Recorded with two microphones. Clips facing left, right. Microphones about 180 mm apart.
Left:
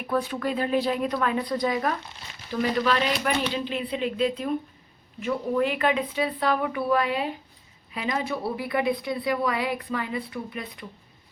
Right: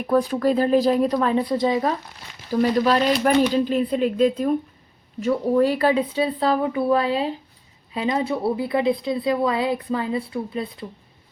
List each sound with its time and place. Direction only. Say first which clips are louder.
0.1 s a woman's voice: right 7 dB; 40° right (ahead or behind)
2.5 s a woman's voice: right 6 dB; 40° right (ahead or behind)